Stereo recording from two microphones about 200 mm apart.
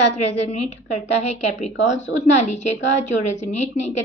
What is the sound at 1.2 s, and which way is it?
A woman's voice, 35° left (ahead or behind).